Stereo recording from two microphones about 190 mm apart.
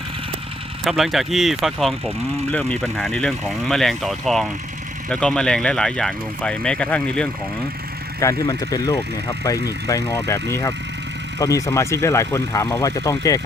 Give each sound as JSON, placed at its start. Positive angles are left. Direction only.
{"t": 0.9, "sound": "speech", "side_deg": 0}
{"t": 8.2, "sound": "speech", "side_deg": 20}